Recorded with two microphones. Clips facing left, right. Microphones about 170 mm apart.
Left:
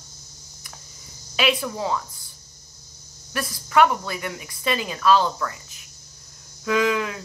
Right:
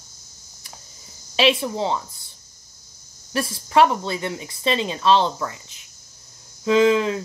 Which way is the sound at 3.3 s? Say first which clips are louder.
Right 2 dB; 30° right (ahead or behind).